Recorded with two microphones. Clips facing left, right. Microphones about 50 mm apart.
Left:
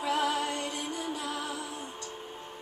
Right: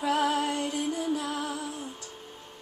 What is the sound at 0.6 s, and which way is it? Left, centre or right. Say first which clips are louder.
Music: right 5 dB; left.